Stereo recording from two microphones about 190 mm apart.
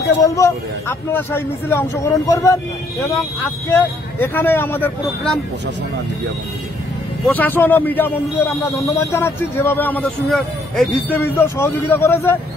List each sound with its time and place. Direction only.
0.2 s a man's voice: 15° left (ahead or behind)
3.7 s a man's voice: 10° left (ahead or behind)
7.2 s a man's voice: 10° left (ahead or behind)